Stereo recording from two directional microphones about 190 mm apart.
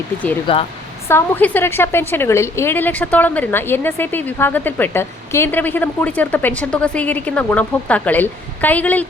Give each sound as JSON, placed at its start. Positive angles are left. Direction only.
{"t": 0.5, "sound": "speech", "side_deg": 25}
{"t": 1.0, "sound": "a woman's voice", "side_deg": 10}